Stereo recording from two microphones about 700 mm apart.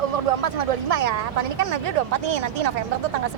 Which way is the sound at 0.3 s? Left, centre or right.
Right.